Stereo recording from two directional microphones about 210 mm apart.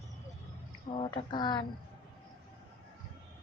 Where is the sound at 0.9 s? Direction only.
25° left (ahead or behind).